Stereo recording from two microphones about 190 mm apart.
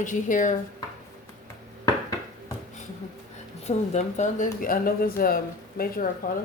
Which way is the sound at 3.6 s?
35° left (ahead or behind).